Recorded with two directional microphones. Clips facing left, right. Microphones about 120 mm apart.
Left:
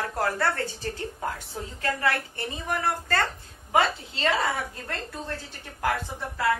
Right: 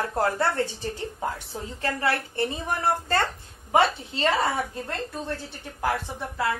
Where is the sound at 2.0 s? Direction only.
30° right (ahead or behind).